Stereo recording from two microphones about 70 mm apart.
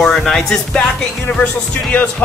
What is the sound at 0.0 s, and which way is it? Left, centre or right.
Speech, centre.